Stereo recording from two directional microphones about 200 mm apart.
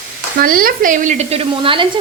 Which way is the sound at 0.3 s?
45° right (ahead or behind).